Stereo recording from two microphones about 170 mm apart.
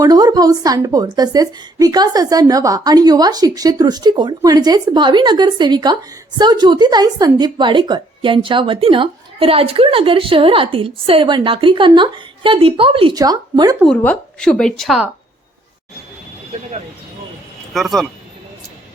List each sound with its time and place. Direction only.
0.0 s a woman's voice: 20° right (ahead or behind)
13.8 s a woman's voice: 10° left (ahead or behind)
17.7 s a woman's voice: centre (ahead or behind)